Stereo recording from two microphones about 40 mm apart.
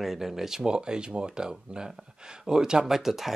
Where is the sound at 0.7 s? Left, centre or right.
Right.